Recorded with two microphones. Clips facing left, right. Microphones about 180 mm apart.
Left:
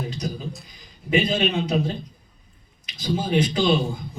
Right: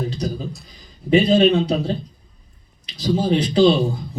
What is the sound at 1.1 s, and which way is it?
A man's voice, 35° right (ahead or behind).